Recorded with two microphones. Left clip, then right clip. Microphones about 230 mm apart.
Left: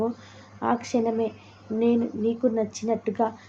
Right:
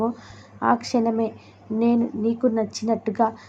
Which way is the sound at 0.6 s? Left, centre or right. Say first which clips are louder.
Right 4 dB; centre.